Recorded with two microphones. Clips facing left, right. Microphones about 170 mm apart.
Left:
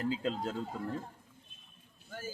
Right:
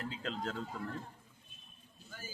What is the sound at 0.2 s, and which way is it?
Speech, 15° left (ahead or behind).